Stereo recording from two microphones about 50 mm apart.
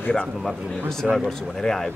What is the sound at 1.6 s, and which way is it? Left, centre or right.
Speech, centre.